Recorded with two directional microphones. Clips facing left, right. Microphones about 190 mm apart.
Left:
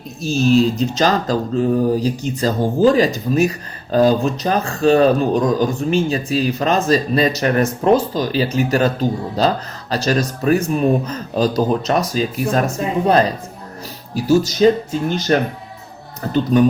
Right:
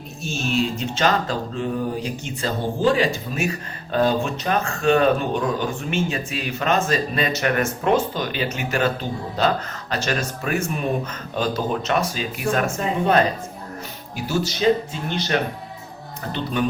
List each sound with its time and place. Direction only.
0.2 s speech: 35° left (ahead or behind)
14.3 s speech: 40° left (ahead or behind)